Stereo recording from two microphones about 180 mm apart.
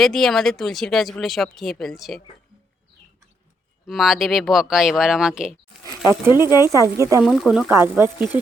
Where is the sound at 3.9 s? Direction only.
Centre (ahead or behind); by 7.2 s 15° right (ahead or behind).